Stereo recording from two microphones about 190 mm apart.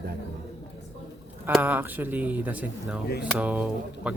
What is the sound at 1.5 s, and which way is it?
Speech, 10° right (ahead or behind).